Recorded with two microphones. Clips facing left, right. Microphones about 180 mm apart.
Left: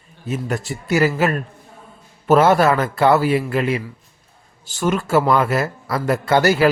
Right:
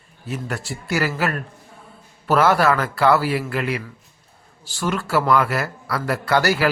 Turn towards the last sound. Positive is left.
turn(degrees=20)  # may be behind; listen again after turning